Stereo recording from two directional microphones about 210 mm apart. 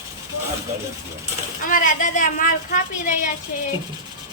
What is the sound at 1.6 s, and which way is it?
Speech, 40° left (ahead or behind).